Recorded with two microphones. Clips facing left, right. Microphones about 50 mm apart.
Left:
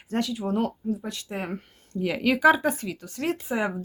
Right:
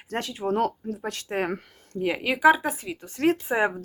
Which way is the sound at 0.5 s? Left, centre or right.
Right.